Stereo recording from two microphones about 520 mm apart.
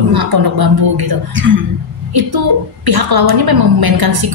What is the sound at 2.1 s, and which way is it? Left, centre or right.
A woman's voice, right.